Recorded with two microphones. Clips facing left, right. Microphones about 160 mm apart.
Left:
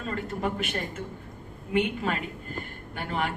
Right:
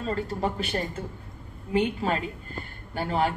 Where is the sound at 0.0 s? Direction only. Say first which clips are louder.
Right 2 dB; 30° right (ahead or behind).